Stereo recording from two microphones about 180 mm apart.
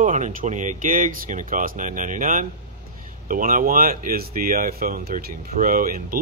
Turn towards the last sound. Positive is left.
turn(degrees=-55)  # may be behind; listen again after turning